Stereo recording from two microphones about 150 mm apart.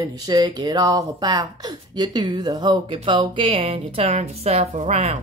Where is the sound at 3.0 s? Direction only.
35° right (ahead or behind).